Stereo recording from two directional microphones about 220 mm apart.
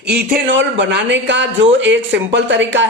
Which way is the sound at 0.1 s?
50° right (ahead or behind).